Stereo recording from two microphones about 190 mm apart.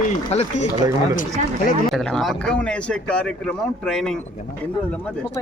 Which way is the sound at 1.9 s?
Centre (ahead or behind).